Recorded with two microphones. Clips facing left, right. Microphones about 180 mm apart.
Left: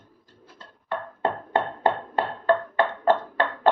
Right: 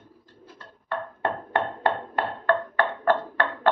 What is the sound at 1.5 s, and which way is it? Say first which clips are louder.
Music: left 2 dB; 30° left (ahead or behind).